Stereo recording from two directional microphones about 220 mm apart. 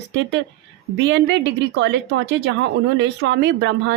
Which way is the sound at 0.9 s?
55° right (ahead or behind).